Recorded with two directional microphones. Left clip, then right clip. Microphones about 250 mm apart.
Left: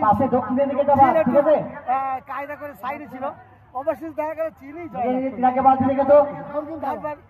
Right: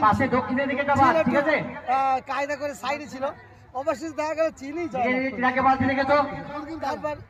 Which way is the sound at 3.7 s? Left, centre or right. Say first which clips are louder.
Left 2 dB; right.